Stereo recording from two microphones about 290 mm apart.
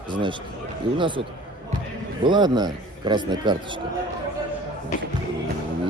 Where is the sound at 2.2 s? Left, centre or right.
Centre.